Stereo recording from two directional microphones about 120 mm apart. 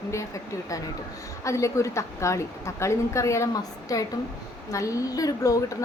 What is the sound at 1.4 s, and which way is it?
A woman's voice, 25° left (ahead or behind).